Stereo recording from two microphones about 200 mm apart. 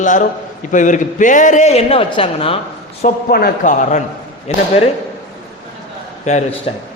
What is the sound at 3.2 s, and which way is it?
A man's voice, 50° left (ahead or behind).